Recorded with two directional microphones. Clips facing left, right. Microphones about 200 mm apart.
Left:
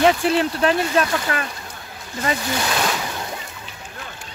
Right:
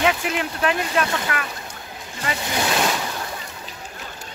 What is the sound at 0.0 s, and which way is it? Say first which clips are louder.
Speech: left 5 dB; 35° left (ahead or behind).